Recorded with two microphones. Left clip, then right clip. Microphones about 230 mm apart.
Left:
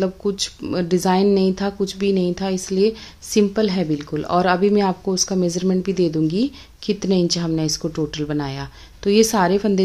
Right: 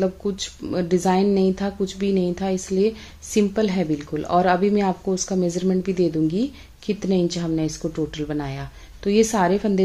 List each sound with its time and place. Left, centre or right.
0.0 s speech: centre